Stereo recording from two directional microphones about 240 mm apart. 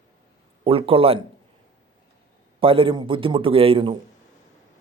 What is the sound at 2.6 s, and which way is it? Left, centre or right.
Speech, right.